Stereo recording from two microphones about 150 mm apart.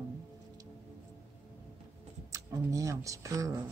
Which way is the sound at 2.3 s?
20° right (ahead or behind).